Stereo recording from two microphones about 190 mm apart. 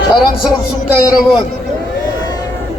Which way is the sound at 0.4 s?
5° right (ahead or behind).